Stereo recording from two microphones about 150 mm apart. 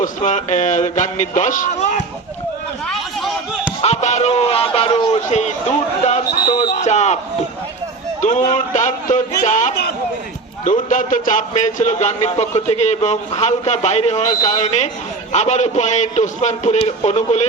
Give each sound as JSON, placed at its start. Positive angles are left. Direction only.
{"t": 0.0, "sound": "a man's voice", "side_deg": 55}
{"t": 2.8, "sound": "a sound", "side_deg": 0}
{"t": 3.8, "sound": "a man's voice", "side_deg": 45}
{"t": 6.3, "sound": "a sound", "side_deg": 30}
{"t": 6.7, "sound": "speech", "side_deg": 50}
{"t": 8.2, "sound": "a man's voice", "side_deg": 60}
{"t": 14.2, "sound": "a man's voice", "side_deg": 30}
{"t": 14.5, "sound": "a man's voice", "side_deg": 50}